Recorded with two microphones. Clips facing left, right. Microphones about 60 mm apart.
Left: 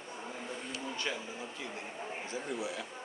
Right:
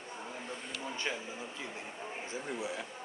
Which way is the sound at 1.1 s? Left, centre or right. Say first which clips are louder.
Even; right.